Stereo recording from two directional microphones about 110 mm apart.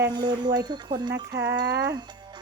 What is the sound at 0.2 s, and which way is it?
Speech, 40° right (ahead or behind).